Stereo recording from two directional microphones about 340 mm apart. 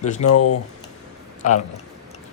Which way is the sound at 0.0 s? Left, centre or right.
Left.